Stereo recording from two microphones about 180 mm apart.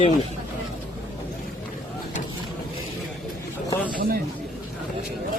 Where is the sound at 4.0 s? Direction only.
55° right (ahead or behind).